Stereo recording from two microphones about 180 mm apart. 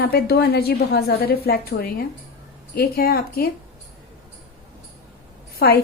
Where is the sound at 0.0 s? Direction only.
60° left (ahead or behind).